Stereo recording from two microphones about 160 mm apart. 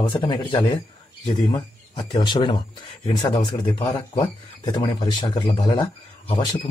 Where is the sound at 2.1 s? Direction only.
30° left (ahead or behind).